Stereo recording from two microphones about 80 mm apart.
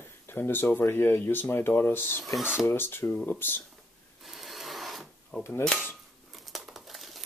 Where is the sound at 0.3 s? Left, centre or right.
Left.